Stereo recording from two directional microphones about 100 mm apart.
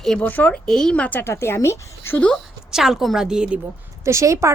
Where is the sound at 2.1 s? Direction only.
10° left (ahead or behind).